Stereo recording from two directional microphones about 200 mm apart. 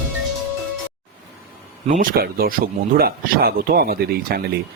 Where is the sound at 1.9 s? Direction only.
45° right (ahead or behind).